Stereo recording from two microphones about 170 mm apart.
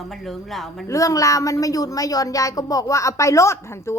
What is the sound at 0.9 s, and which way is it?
A woman's voice, 20° left (ahead or behind).